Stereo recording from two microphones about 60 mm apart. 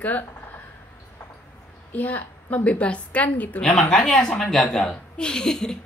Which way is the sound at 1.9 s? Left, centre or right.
Left.